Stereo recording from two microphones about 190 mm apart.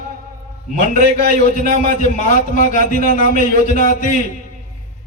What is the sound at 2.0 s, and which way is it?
A man's voice, 40° left (ahead or behind).